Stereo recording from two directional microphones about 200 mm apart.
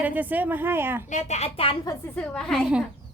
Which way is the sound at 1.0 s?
35° left (ahead or behind).